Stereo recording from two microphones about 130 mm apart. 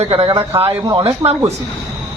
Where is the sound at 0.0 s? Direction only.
45° right (ahead or behind).